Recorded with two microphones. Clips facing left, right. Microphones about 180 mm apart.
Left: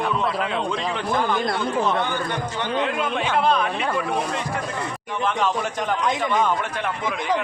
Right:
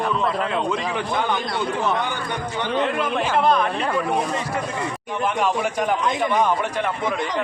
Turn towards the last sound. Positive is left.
turn(degrees=5)  # may be behind; listen again after turning